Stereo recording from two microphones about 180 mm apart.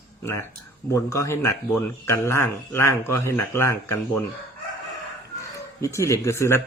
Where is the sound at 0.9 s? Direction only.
15° left (ahead or behind).